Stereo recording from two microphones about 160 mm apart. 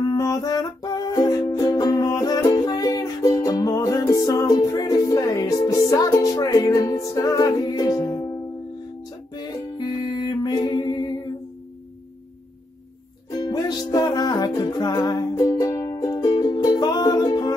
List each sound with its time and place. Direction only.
0.1 s music: 25° left (ahead or behind)
13.3 s music: 25° left (ahead or behind)